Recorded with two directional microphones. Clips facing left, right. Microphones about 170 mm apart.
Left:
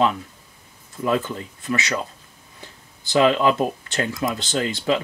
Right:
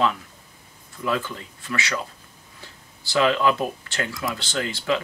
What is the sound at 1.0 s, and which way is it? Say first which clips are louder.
Speech: left 4 dB; 25° left (ahead or behind).